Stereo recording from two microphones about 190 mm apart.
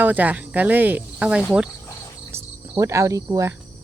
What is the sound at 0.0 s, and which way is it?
Speech, 10° right (ahead or behind).